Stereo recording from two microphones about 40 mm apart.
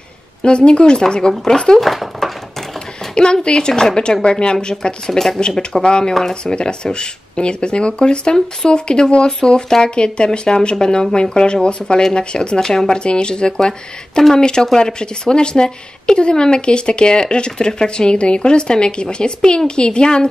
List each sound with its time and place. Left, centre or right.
0.4 s speech: left
1.8 s a sound: centre
3.4 s speech: left
5.0 s speech: centre